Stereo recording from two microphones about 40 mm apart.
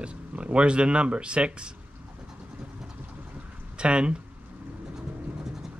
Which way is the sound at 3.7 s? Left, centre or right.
Right.